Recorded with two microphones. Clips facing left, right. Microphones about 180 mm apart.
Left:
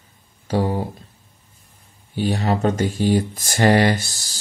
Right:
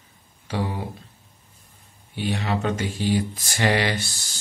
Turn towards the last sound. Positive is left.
turn(degrees=40)  # may be behind; listen again after turning